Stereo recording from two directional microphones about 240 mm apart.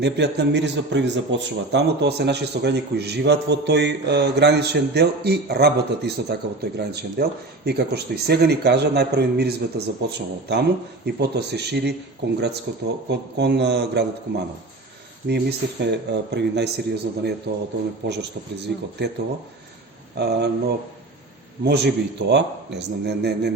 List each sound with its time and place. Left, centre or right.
0.0 s a man's voice: right
15.3 s a man's voice: right
20.1 s a man's voice: right